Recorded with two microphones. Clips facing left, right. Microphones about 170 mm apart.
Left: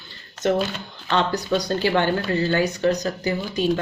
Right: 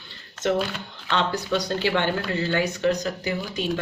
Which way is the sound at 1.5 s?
40° left (ahead or behind).